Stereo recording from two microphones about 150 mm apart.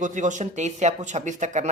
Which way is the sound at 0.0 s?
55° right (ahead or behind).